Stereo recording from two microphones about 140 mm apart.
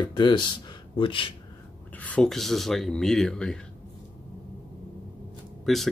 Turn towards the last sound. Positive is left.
turn(degrees=0)  # may be behind; listen again after turning